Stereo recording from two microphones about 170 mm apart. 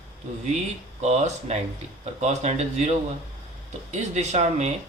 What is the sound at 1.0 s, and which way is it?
Speech, 40° right (ahead or behind).